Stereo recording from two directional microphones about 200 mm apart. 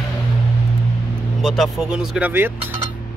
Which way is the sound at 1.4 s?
Centre (ahead or behind).